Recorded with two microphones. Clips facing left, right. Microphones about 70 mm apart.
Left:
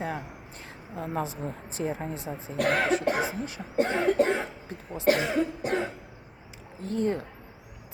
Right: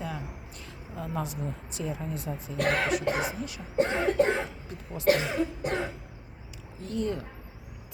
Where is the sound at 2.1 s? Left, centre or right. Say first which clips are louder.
Left 1 dB; left.